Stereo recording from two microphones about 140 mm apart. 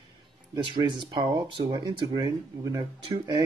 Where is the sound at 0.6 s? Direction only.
35° right (ahead or behind).